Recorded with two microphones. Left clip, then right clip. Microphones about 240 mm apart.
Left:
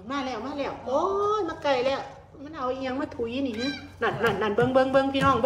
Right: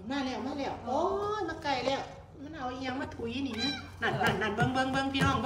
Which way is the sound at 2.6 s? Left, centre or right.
Left.